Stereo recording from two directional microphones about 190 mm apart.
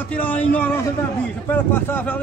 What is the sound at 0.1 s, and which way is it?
Speech, 10° left (ahead or behind).